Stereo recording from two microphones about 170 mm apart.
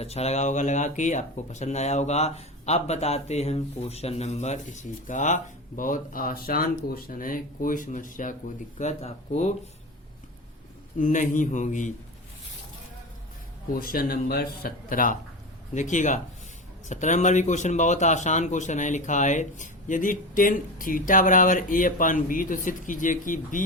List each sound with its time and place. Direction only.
0.0 s speech: 40° left (ahead or behind)
8.8 s speech: 40° left (ahead or behind)
10.9 s speech: 50° left (ahead or behind)
13.7 s speech: 60° left (ahead or behind)